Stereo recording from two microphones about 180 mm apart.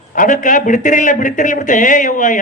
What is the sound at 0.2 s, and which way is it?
A man's voice, 45° left (ahead or behind).